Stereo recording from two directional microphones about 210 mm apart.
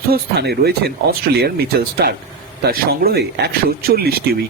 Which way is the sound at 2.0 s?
50° right (ahead or behind).